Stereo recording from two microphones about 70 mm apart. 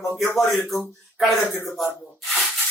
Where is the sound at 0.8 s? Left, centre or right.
Centre.